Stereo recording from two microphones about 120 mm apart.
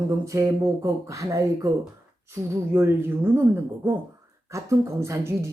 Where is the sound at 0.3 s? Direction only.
25° right (ahead or behind).